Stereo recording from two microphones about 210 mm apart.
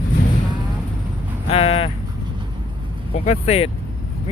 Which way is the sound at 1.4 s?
25° left (ahead or behind).